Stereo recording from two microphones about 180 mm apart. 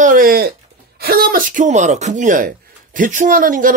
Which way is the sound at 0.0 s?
50° right (ahead or behind).